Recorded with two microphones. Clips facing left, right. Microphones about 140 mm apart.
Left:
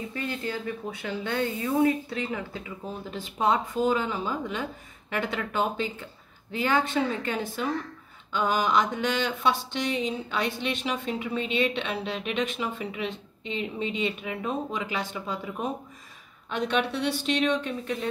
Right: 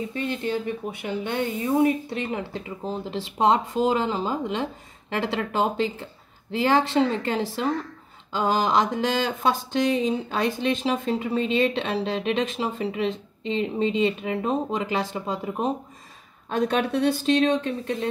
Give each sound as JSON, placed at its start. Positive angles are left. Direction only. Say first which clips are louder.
{"t": 0.1, "sound": "speech", "louder": "right 4 dB", "side_deg": -25}